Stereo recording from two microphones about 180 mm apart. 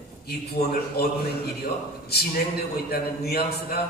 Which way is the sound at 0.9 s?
60° left (ahead or behind).